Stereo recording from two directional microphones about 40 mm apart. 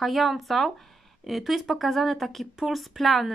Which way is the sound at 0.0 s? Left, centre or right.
Centre.